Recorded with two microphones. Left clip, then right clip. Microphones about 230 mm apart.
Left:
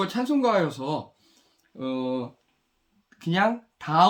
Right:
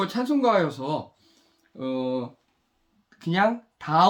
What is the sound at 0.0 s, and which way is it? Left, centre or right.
Speech, centre.